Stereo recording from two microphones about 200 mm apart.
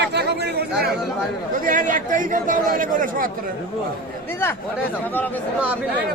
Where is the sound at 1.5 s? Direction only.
40° right (ahead or behind).